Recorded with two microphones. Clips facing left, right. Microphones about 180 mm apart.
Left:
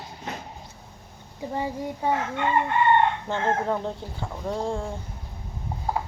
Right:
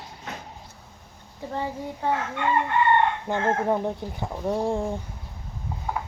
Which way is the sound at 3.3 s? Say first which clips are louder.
Right 2 dB; 15° right (ahead or behind).